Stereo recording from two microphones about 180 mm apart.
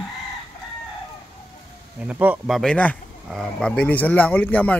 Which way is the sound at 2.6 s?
5° left (ahead or behind).